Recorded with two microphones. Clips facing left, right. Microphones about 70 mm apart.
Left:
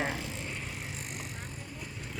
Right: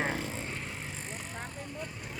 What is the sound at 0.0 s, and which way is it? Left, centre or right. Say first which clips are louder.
Vehicle: right 1 dB; right.